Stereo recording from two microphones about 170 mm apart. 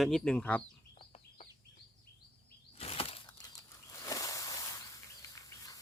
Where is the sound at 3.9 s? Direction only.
20° left (ahead or behind).